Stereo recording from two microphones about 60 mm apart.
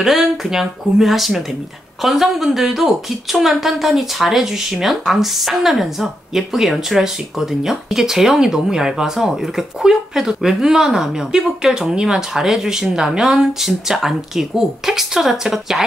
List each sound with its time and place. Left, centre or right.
0.0 s a woman's voice: centre